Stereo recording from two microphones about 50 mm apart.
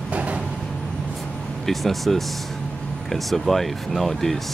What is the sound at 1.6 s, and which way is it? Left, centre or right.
Speech, centre.